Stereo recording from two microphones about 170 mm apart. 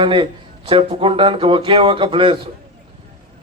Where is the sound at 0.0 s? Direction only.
30° right (ahead or behind).